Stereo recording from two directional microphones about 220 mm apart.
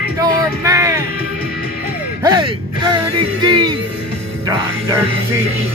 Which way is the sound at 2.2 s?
20° right (ahead or behind).